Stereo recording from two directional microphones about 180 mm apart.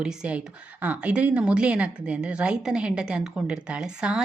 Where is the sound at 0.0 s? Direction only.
5° right (ahead or behind).